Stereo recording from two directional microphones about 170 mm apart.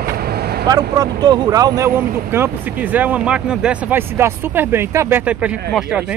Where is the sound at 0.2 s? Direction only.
70° right (ahead or behind).